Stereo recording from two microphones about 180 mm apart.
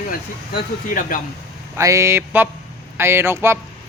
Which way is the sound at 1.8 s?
15° right (ahead or behind).